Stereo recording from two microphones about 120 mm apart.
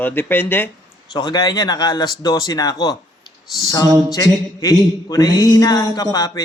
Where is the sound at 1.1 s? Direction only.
35° left (ahead or behind).